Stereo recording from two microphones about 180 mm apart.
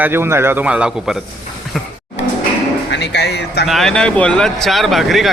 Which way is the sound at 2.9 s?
75° left (ahead or behind).